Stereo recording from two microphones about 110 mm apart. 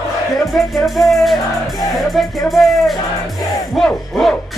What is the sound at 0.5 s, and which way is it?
Music, centre (ahead or behind).